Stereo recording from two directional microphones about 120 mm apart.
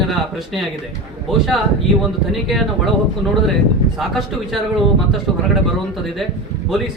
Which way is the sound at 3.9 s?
Centre (ahead or behind).